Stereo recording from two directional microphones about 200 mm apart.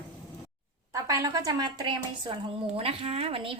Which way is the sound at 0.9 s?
15° right (ahead or behind).